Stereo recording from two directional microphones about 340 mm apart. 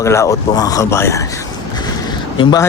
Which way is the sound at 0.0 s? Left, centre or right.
Centre.